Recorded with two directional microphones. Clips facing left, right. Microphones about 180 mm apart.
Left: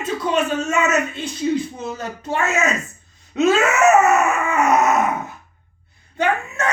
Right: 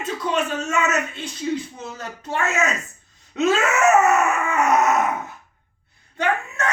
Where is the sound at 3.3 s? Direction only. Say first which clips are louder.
Left 3 dB; 5° left (ahead or behind).